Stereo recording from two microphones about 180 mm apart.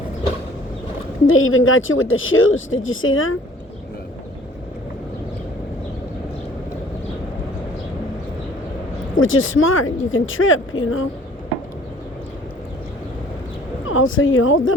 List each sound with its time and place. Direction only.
1.3 s speech: 90° left
9.1 s speech: 90° left
13.8 s speech: 90° left